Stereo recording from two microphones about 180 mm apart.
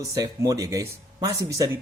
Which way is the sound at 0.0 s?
20° right (ahead or behind).